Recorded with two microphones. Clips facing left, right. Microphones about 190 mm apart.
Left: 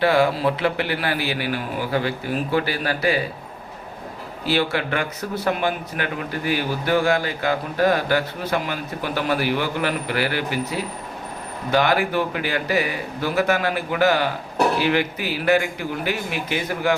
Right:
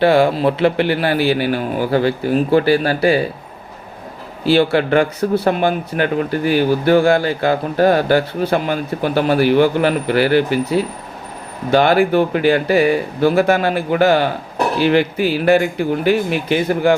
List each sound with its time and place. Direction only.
0.0 s a man's voice: 25° right (ahead or behind)
4.4 s a man's voice: 30° right (ahead or behind)